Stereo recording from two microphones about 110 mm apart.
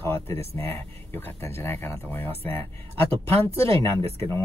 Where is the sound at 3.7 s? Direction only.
55° right (ahead or behind).